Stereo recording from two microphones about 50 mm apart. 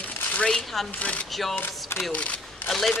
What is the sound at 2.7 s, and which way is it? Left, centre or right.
Speech, centre.